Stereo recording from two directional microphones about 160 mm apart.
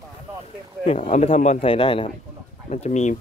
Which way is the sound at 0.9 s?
45° left (ahead or behind).